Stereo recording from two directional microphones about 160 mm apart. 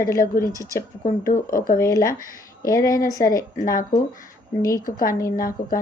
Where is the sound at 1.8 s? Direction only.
20° left (ahead or behind).